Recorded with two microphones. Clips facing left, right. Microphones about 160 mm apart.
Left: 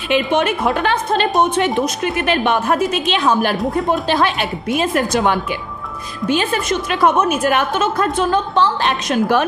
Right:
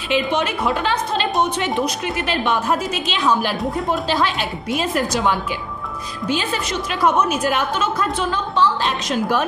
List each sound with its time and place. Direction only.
0.1 s a woman's voice: 55° left (ahead or behind)